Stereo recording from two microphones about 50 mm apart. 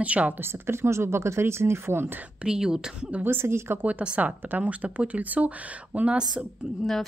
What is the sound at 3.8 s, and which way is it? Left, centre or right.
Speech, right.